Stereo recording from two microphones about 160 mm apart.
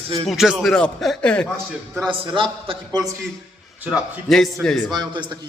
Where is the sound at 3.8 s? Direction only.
Centre (ahead or behind).